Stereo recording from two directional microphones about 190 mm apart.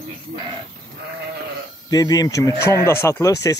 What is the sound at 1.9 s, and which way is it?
Speech, 20° left (ahead or behind).